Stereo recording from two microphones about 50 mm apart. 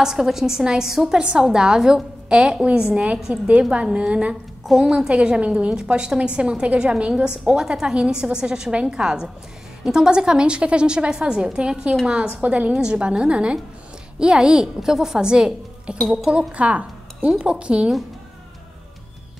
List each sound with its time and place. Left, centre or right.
0.0 s a woman's voice: centre
8.7 s a woman's voice: right
9.0 s a woman's voice: centre
16.0 s speech: centre
16.3 s a woman's voice: right